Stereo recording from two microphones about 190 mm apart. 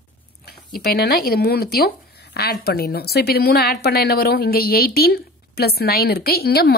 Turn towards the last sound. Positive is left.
turn(degrees=60)  # may be behind; listen again after turning